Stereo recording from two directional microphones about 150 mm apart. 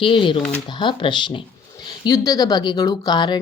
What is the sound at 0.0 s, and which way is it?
Speech, 35° left (ahead or behind).